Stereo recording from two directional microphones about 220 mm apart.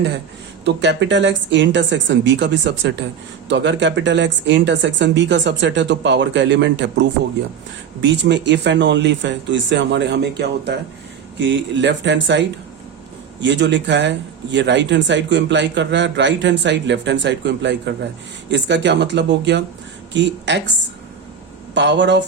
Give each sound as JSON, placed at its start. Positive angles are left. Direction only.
{"t": 0.6, "sound": "speech", "side_deg": -50}
{"t": 8.2, "sound": "a man's voice", "side_deg": -55}
{"t": 21.8, "sound": "a man's voice", "side_deg": -55}